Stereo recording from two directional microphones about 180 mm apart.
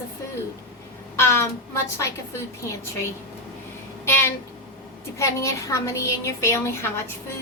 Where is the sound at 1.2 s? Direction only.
15° left (ahead or behind).